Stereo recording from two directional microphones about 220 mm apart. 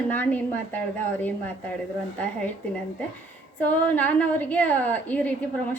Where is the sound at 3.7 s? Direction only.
5° left (ahead or behind).